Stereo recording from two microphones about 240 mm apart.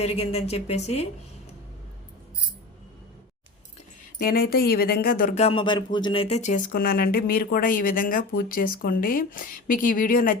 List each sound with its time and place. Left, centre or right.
0.0 s speech: left
4.2 s speech: left